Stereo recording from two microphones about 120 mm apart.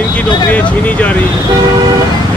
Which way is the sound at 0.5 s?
10° left (ahead or behind).